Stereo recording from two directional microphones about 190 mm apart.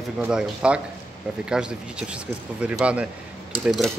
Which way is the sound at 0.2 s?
5° right (ahead or behind).